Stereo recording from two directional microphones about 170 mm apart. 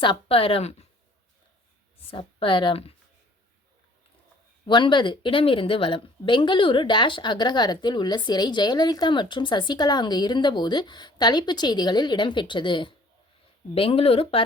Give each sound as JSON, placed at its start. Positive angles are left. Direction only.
{"t": 0.0, "sound": "a woman's voice", "side_deg": 30}
{"t": 2.0, "sound": "a woman's voice", "side_deg": 30}
{"t": 4.6, "sound": "a woman's voice", "side_deg": 30}